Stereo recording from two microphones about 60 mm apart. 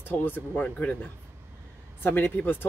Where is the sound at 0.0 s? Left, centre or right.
Left.